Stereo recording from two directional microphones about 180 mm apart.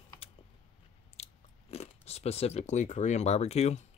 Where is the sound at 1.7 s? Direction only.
35° left (ahead or behind).